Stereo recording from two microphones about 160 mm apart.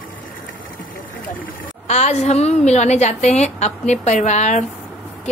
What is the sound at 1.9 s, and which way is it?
A woman's voice, 45° left (ahead or behind).